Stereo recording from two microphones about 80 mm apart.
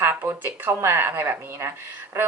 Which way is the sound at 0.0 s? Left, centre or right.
Right.